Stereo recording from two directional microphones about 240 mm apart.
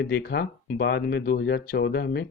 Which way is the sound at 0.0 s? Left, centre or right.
Left.